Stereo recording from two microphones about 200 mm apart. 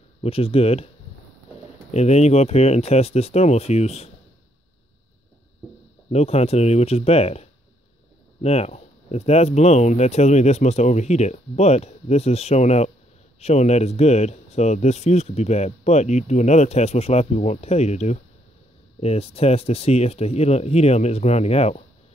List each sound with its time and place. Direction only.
0.2 s speech: 30° left (ahead or behind)
1.9 s speech: 35° left (ahead or behind)
6.0 s speech: 30° left (ahead or behind)